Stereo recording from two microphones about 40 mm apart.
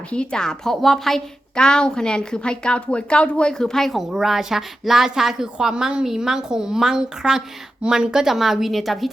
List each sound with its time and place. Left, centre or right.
0.1 s a woman's voice: left; by 1.2 s centre
1.5 s speech: centre
3.9 s a woman's voice: centre